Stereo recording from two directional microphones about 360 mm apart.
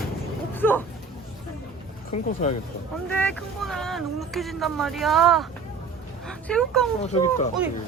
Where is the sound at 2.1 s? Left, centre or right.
Centre.